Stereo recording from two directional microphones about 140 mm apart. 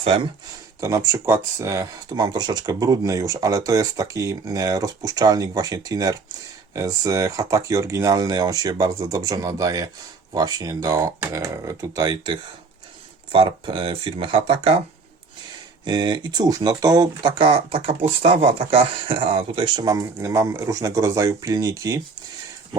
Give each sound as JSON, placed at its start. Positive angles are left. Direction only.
{"t": 0.0, "sound": "speech", "side_deg": -40}
{"t": 0.8, "sound": "speech", "side_deg": -20}
{"t": 15.8, "sound": "speech", "side_deg": -30}